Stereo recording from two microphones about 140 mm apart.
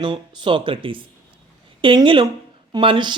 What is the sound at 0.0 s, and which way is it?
Speech, 35° right (ahead or behind).